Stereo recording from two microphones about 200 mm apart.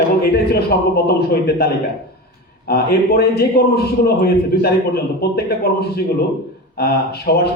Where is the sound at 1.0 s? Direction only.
50° left (ahead or behind).